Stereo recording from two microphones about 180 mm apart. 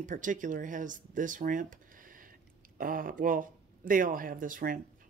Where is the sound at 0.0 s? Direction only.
45° right (ahead or behind).